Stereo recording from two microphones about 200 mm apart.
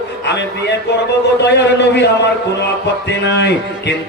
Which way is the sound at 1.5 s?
60° left (ahead or behind).